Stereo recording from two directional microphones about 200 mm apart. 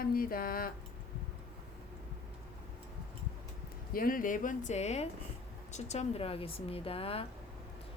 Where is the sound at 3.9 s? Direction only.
45° left (ahead or behind); by 7.3 s 30° left (ahead or behind).